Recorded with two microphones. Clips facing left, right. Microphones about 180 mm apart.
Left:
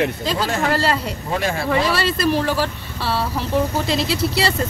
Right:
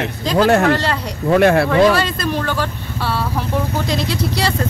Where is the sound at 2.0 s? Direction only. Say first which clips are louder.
Left 1 dB; 5° left (ahead or behind).